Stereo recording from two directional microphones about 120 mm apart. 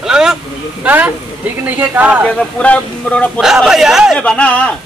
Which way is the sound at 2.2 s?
5° left (ahead or behind).